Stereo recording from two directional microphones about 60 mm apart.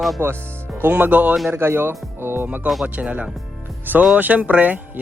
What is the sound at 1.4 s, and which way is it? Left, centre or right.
Speech, right.